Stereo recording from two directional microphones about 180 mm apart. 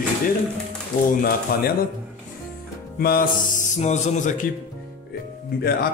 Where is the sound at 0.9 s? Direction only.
50° left (ahead or behind).